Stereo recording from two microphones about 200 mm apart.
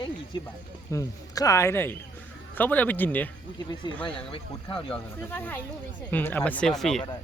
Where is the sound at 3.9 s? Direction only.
25° left (ahead or behind).